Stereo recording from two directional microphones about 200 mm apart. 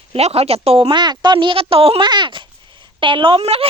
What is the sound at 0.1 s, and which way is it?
A woman's voice, 30° right (ahead or behind).